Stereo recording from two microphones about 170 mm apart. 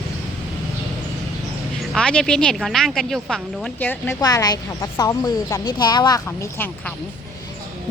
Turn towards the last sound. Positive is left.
turn(degrees=25)  # may be behind; listen again after turning